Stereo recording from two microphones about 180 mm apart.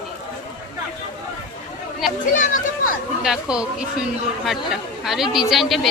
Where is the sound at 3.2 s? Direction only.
5° right (ahead or behind).